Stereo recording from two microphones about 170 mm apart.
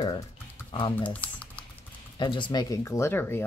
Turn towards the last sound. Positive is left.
turn(degrees=15)  # may be behind; listen again after turning